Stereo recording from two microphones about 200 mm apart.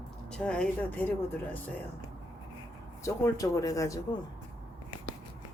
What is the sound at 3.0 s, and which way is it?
Speech, 15° left (ahead or behind).